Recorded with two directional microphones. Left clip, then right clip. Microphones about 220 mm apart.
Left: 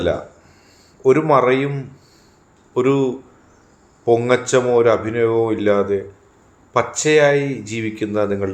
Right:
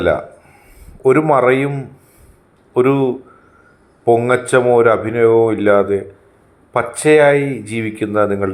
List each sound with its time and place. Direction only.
1.0 s speech: 10° right (ahead or behind)